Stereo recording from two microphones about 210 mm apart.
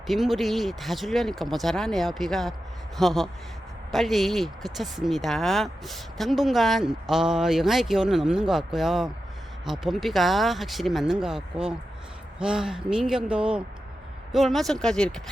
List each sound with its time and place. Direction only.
0.1 s speech: centre (ahead or behind)